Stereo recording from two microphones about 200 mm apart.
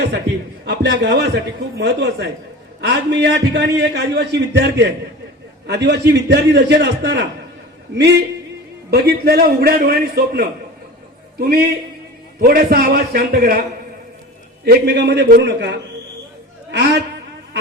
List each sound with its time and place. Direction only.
0.6 s a man's voice: 55° right (ahead or behind)
8.9 s a man's voice: 55° right (ahead or behind)
14.6 s a man's voice: 55° right (ahead or behind)